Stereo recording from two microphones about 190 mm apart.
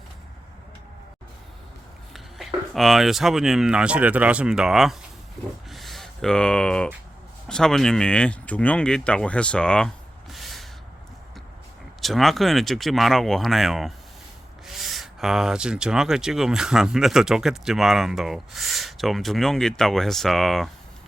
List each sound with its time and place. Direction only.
2.1 s speech: centre (ahead or behind)
5.7 s a sound: centre (ahead or behind)
7.4 s speech: 5° left (ahead or behind)
11.9 s speech: centre (ahead or behind)